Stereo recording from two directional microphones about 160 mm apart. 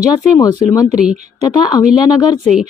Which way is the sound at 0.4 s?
20° left (ahead or behind).